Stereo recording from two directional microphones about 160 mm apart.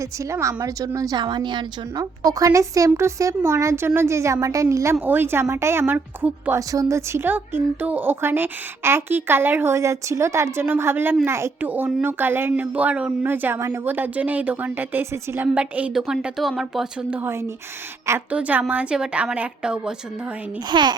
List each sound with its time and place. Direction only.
0.3 s a woman's voice: 20° right (ahead or behind)
6.6 s a woman's voice: 20° right (ahead or behind); by 19.9 s 5° right (ahead or behind)
20.7 s a woman's voice: 30° right (ahead or behind)